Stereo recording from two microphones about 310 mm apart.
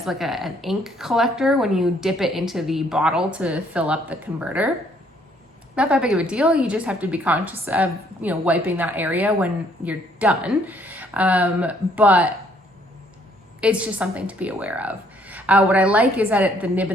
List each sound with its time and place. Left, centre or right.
0.0 s a woman's voice: centre
5.7 s a woman's voice: centre
13.6 s a woman's voice: centre